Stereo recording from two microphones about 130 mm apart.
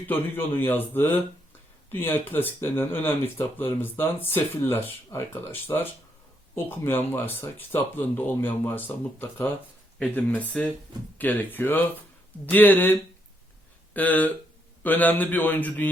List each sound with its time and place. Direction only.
0.1 s speech: 15° left (ahead or behind)